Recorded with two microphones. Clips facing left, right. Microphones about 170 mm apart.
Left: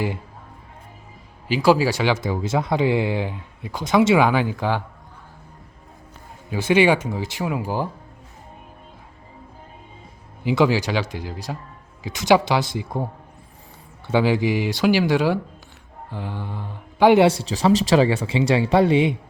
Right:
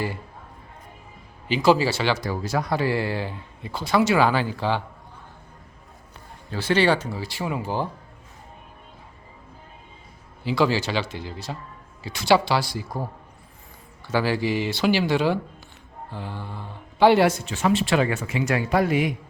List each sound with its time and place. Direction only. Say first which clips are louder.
1.5 s speech: left 2 dB; 5° left (ahead or behind)
6.7 s speech: left 4 dB; 10° left (ahead or behind)
7.4 s speech: left 2 dB; 10° left (ahead or behind)
10.4 s speech: left 3 dB; 15° left (ahead or behind)
14.1 s speech: left 4 dB; 20° left (ahead or behind)
17.2 s speech: left 4 dB; 35° left (ahead or behind)